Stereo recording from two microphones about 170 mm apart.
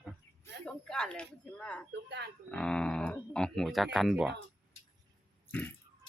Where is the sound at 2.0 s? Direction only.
80° right.